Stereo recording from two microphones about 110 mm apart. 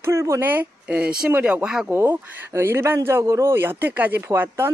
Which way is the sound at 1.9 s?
20° right (ahead or behind).